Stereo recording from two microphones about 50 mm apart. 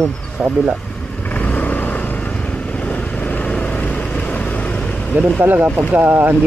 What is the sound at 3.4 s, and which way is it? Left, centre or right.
Vehicle, left.